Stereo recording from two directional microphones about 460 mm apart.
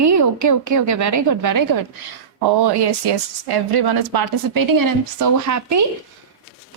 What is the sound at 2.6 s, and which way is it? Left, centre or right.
Speech, right.